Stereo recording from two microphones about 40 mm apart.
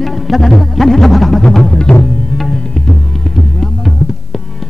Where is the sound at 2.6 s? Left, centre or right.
Centre.